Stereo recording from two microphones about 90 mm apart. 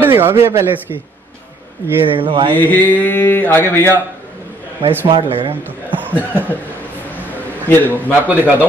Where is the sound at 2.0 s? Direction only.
75° right (ahead or behind).